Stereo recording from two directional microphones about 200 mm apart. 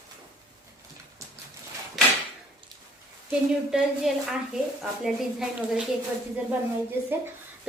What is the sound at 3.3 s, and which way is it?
A woman's voice, 5° right (ahead or behind).